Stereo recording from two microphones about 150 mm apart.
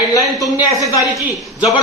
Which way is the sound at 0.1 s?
20° left (ahead or behind).